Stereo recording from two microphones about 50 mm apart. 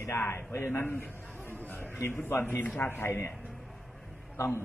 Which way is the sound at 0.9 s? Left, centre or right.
Left.